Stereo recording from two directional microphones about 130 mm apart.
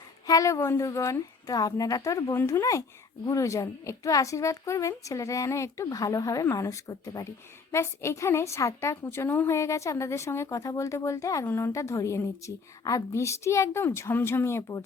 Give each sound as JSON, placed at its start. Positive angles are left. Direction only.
{"t": 0.3, "sound": "a woman's voice", "side_deg": 25}